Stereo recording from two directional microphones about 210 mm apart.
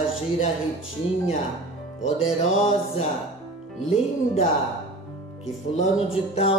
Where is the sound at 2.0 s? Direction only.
70° left (ahead or behind).